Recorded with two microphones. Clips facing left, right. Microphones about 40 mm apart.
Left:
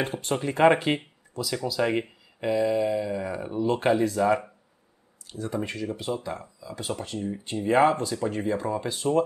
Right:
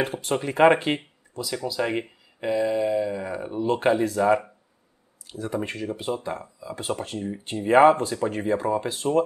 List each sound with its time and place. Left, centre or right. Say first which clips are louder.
0.0 s speech: right 2 dB; centre
1.3 s speech: even; centre
5.3 s speech: right 2 dB; centre
8.2 s speech: right 3 dB; centre
9.0 s speech: right 1 dB; centre